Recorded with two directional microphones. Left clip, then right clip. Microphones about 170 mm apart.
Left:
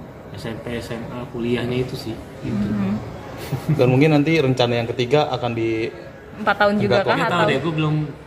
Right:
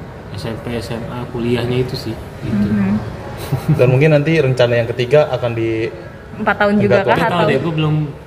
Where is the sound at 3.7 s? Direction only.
35° left (ahead or behind).